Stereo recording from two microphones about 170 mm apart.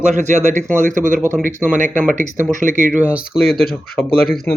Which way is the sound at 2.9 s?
10° right (ahead or behind).